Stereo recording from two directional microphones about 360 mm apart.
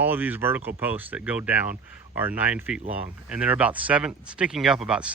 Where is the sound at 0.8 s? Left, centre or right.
Centre.